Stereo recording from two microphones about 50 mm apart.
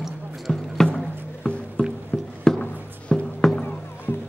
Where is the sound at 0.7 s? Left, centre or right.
Centre.